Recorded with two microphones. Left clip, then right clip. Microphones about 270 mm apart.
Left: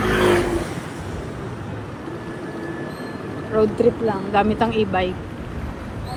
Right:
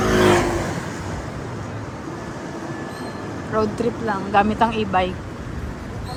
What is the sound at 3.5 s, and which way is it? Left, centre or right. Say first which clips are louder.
A woman's voice: left 4 dB; centre.